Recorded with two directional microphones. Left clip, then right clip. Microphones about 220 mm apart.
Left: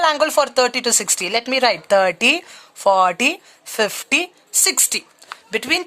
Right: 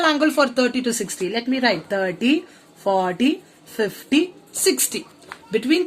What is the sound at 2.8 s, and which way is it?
Speech, 40° left (ahead or behind).